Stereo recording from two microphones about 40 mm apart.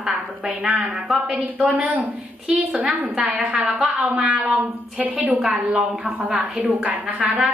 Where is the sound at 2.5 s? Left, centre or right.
Right.